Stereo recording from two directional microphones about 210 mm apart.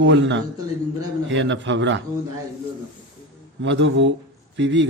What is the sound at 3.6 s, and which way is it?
Speech, 60° right (ahead or behind).